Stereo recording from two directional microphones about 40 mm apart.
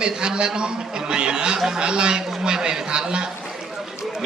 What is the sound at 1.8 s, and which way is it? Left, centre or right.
A man's voice, right.